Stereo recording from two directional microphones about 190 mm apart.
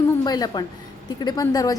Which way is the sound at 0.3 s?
20° left (ahead or behind).